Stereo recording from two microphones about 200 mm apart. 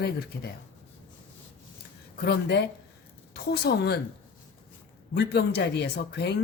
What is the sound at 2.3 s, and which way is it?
Speech, 55° left (ahead or behind).